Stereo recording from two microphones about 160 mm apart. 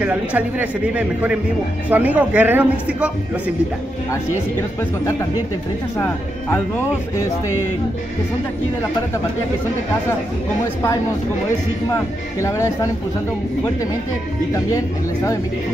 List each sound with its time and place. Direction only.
0.0 s a man's voice: 10° right (ahead or behind)
12.4 s speech: 20° left (ahead or behind)